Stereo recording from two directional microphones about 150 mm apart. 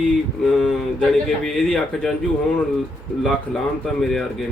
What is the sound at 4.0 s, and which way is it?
Speech, centre (ahead or behind).